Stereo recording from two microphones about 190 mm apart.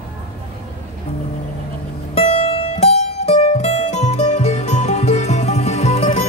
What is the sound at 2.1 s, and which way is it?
Music, 30° left (ahead or behind).